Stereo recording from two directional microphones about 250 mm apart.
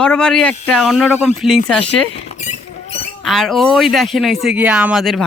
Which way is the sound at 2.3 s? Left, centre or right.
Left.